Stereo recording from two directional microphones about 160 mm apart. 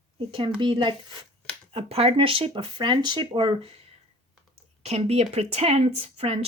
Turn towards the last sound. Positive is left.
turn(degrees=-40)  # may be behind; listen again after turning